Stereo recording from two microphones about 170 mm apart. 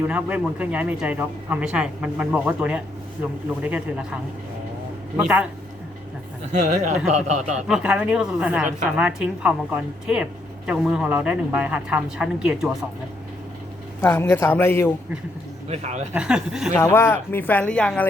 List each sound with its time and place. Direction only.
0.0 s a man's voice: 10° right (ahead or behind)
6.5 s speech: 45° right (ahead or behind)
7.7 s a man's voice: 5° right (ahead or behind)
14.0 s speech: 15° left (ahead or behind)
15.7 s speech: 40° right (ahead or behind)
16.1 s speech: 5° right (ahead or behind)
16.7 s speech: 15° left (ahead or behind)